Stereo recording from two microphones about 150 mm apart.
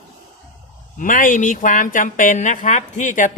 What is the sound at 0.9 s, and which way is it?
Speech, 60° left (ahead or behind).